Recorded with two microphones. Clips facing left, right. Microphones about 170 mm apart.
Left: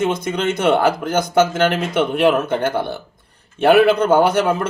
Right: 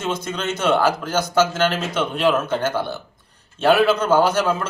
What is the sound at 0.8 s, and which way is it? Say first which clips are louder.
Speech: left 3 dB; 55° left (ahead or behind).